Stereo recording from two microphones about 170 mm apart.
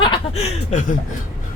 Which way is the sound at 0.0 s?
30° left (ahead or behind).